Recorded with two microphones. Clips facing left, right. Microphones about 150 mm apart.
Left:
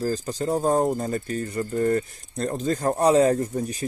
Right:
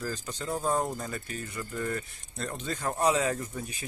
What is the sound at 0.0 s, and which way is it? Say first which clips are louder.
Speech: left 10 dB; 35° left (ahead or behind).